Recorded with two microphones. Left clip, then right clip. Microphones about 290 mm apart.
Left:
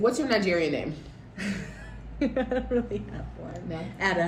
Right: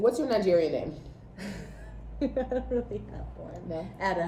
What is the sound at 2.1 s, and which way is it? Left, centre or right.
Speech, left.